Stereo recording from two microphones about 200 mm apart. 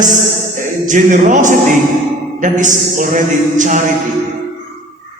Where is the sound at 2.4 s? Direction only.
40° right (ahead or behind).